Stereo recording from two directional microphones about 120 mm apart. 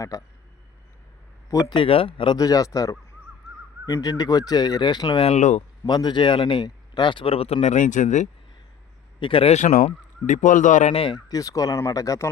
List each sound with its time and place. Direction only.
0.1 s speech: 30° left (ahead or behind)
1.6 s speech: 50° left (ahead or behind)
2.4 s speech: 30° left (ahead or behind)
5.2 s speech: 70° left (ahead or behind)
5.8 s speech: 35° left (ahead or behind); by 8.3 s 90° left
9.2 s speech: 50° left (ahead or behind)
9.6 s speech: 85° left
10.9 s speech: 50° left (ahead or behind)
11.3 s speech: 30° left (ahead or behind)